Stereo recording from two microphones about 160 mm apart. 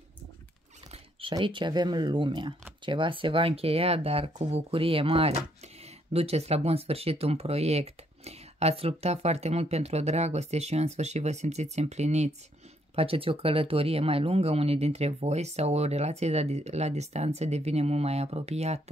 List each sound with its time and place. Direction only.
1.3 s speech: 30° right (ahead or behind)